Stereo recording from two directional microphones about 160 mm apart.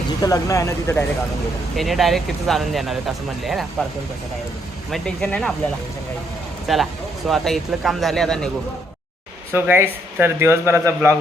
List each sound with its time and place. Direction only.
0.2 s speech: 20° left (ahead or behind)
1.7 s speech: centre (ahead or behind)
4.9 s speech: 5° left (ahead or behind)
6.7 s speech: centre (ahead or behind)
9.5 s speech: 15° right (ahead or behind)